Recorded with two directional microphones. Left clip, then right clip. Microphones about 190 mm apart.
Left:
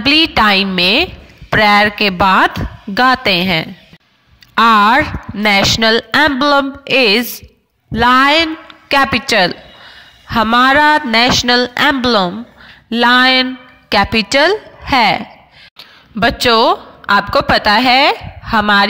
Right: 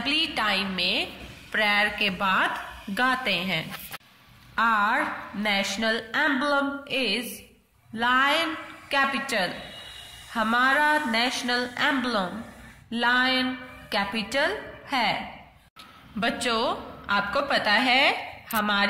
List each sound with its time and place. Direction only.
0.0 s a woman's voice: 50° left (ahead or behind)